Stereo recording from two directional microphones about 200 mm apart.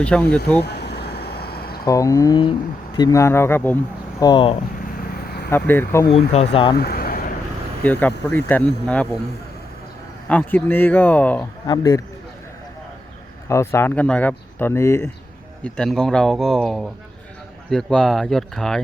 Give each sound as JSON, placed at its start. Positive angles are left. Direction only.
{"t": 0.0, "sound": "speech", "side_deg": 5}
{"t": 0.6, "sound": "a sound", "side_deg": 55}
{"t": 1.8, "sound": "speech", "side_deg": 15}
{"t": 4.2, "sound": "a man's voice", "side_deg": 20}
{"t": 4.9, "sound": "vehicle", "side_deg": 50}
{"t": 5.5, "sound": "speech", "side_deg": 10}
{"t": 6.3, "sound": "a man's voice", "side_deg": 30}
{"t": 6.7, "sound": "a sound", "side_deg": 50}
{"t": 7.9, "sound": "speech", "side_deg": 10}
{"t": 10.2, "sound": "speech", "side_deg": 10}
{"t": 11.6, "sound": "a man's voice", "side_deg": 20}
{"t": 13.5, "sound": "speech", "side_deg": 15}